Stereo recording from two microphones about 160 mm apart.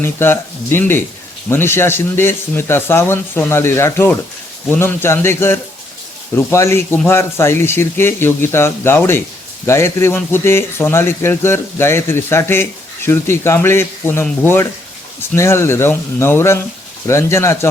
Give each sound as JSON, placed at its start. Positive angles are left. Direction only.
{"t": 0.0, "sound": "a man's voice", "side_deg": 15}